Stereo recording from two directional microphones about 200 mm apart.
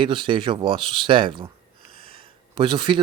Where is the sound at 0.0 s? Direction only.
25° right (ahead or behind).